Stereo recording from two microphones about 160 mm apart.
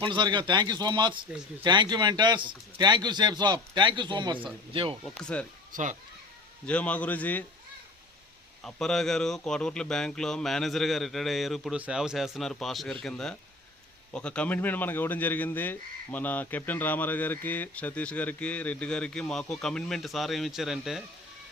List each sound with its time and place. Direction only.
0.0 s a man's voice: 30° right (ahead or behind)
5.0 s a man's voice: 5° left (ahead or behind)
5.7 s a child's voice: 50° right (ahead or behind)
6.7 s a man's voice: 10° left (ahead or behind)
8.6 s a man's voice: 5° left (ahead or behind)